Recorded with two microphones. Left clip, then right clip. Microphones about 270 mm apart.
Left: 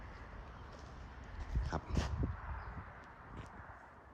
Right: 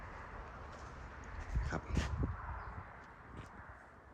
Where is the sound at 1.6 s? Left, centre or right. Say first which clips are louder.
Even; centre.